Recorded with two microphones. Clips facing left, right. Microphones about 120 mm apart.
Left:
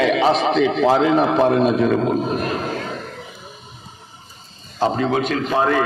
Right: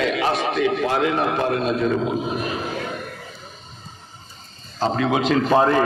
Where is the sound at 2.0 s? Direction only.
45° left (ahead or behind).